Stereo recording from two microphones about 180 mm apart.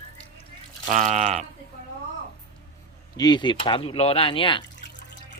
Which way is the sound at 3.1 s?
25° left (ahead or behind).